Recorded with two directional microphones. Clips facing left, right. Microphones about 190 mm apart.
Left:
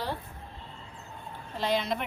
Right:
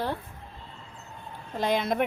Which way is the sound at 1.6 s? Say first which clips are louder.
Right 4 dB; 50° right (ahead or behind).